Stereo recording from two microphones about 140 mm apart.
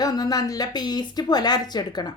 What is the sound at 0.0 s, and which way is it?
A woman's voice, 30° left (ahead or behind).